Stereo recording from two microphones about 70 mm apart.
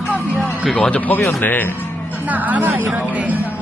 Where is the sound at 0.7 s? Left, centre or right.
Centre.